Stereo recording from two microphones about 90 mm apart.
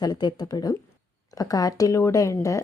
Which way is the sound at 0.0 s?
50° left (ahead or behind).